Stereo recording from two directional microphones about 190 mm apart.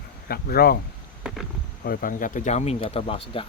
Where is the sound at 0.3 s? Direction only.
50° left (ahead or behind).